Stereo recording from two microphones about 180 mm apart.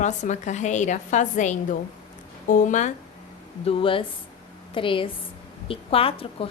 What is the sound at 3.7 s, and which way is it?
A woman's voice, 30° left (ahead or behind).